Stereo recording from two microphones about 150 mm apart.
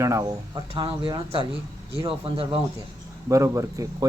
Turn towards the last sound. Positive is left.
turn(degrees=-20)  # may be behind; listen again after turning